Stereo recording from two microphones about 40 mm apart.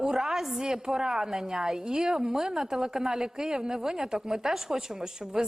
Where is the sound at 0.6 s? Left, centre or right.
Centre.